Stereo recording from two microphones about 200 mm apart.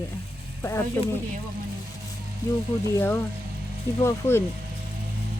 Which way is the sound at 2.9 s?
10° left (ahead or behind).